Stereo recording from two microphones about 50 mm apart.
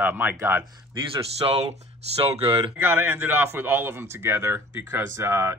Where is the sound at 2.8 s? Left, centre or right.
Right.